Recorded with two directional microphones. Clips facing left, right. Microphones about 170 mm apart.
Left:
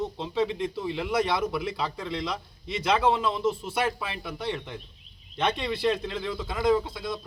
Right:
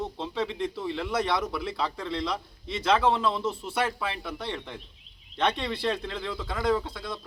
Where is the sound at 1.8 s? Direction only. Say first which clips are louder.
Right 1 dB; 10° left (ahead or behind).